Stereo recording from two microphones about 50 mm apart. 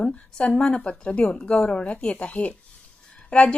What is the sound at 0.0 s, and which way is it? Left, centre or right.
A woman's voice, centre.